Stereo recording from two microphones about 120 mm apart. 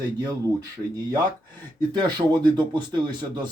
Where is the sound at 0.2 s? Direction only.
35° right (ahead or behind).